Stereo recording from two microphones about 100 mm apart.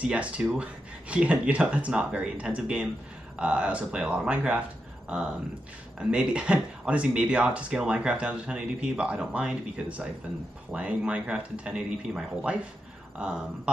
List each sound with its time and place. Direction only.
0.0 s speech: 10° right (ahead or behind)